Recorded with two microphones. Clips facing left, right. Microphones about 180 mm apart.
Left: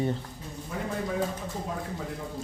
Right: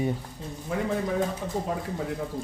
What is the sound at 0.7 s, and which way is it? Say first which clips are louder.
Speech: right 6 dB; 90° right.